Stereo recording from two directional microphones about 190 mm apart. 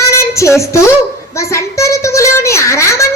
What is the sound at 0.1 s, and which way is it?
Child singing, 15° left (ahead or behind).